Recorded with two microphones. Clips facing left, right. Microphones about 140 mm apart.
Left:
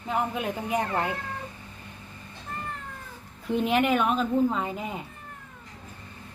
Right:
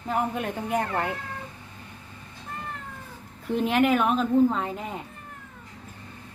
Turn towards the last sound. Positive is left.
turn(degrees=0)  # may be behind; listen again after turning